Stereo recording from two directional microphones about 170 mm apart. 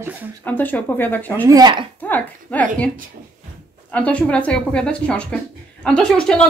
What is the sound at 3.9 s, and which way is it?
A woman's voice, 5° left (ahead or behind).